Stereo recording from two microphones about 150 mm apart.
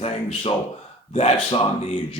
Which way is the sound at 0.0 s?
45° left (ahead or behind).